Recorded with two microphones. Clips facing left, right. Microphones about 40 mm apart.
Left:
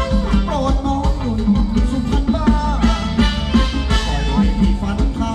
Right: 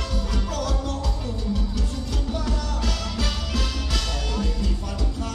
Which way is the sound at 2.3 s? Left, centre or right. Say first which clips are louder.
Left 12 dB; left.